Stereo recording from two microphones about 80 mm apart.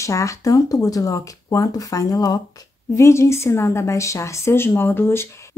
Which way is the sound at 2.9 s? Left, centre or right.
Left.